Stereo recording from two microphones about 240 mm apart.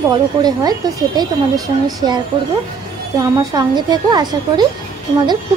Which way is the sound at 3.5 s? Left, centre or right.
Centre.